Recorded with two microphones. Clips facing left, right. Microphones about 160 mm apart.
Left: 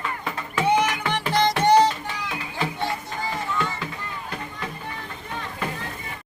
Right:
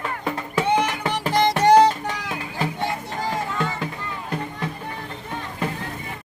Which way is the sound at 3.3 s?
50° right (ahead or behind).